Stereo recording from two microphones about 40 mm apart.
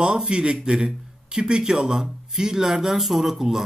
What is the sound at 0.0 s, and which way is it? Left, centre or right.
A man's voice, centre.